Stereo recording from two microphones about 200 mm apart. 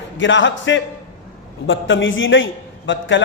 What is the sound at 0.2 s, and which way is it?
A man's voice, 70° left (ahead or behind).